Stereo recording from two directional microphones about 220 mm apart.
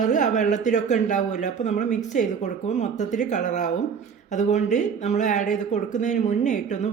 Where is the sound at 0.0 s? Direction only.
35° left (ahead or behind).